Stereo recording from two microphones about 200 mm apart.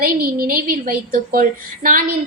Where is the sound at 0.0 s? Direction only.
45° right (ahead or behind).